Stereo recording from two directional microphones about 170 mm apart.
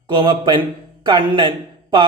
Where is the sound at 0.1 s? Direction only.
25° right (ahead or behind).